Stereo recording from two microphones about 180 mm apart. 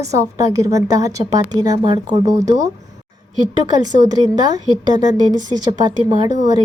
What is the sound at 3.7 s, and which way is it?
Speech, 20° right (ahead or behind).